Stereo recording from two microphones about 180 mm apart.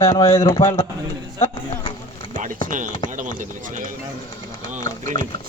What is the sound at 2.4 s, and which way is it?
Speech, 50° right (ahead or behind).